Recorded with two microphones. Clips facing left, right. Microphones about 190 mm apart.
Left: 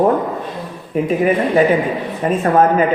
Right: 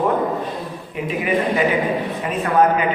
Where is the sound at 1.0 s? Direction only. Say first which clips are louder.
Left 4 dB; 45° left (ahead or behind).